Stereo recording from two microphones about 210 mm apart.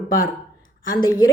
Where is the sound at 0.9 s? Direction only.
20° left (ahead or behind).